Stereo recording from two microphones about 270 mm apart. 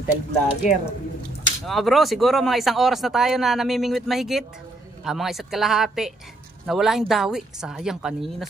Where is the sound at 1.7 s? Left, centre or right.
Centre.